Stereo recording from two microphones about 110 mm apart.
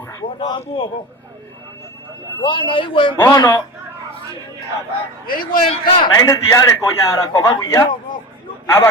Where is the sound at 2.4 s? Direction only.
50° left (ahead or behind).